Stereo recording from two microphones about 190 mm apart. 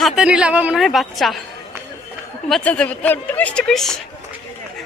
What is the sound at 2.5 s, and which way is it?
A woman's voice, 5° left (ahead or behind).